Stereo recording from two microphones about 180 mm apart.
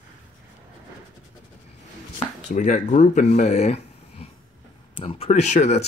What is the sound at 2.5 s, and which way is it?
Speech, 45° left (ahead or behind).